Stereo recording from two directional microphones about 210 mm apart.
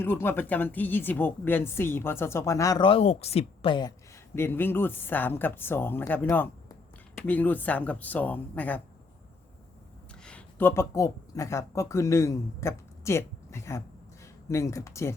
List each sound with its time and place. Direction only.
0.0 s speech: 10° left (ahead or behind)
4.4 s speech: 10° left (ahead or behind)
10.2 s speech: 10° left (ahead or behind)